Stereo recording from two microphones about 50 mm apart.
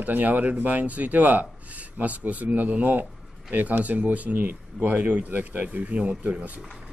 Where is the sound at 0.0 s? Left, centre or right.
Right.